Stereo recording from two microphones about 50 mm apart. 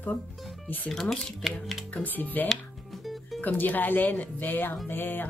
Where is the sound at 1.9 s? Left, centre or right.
Left.